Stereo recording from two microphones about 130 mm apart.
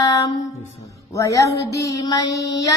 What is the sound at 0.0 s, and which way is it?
Music, 25° left (ahead or behind).